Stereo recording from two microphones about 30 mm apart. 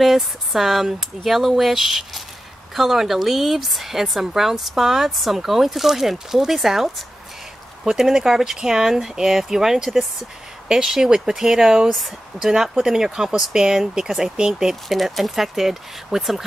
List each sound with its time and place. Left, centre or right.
0.0 s speech: centre; by 14.5 s right
14.9 s speech: centre